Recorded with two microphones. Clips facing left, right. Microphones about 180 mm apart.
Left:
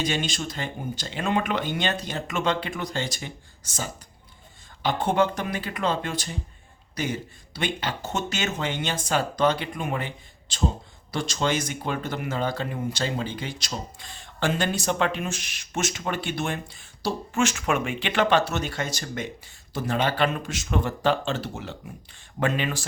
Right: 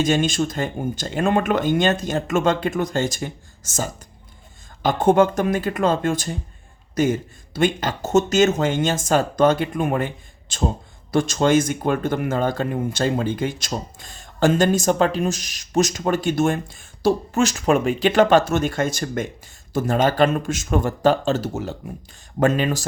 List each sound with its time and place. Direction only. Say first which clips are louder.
0.0 s speech: right 8 dB; 45° right (ahead or behind)
17.4 s speech: right 6 dB; 35° right (ahead or behind)